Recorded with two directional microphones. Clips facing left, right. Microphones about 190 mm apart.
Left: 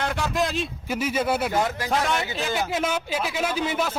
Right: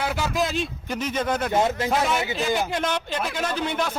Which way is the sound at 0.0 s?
5° right (ahead or behind).